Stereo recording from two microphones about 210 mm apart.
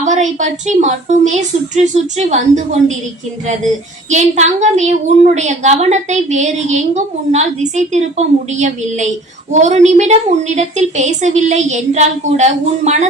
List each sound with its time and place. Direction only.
0.0 s a woman's voice: 35° right (ahead or behind)
4.1 s a woman's voice: 35° right (ahead or behind)